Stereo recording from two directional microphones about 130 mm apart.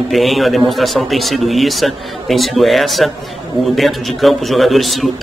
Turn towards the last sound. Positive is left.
turn(degrees=0)  # may be behind; listen again after turning